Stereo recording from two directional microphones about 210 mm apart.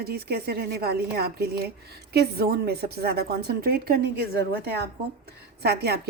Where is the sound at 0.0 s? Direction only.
50° right (ahead or behind).